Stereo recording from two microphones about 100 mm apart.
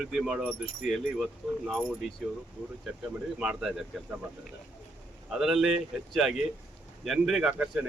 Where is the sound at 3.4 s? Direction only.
5° right (ahead or behind).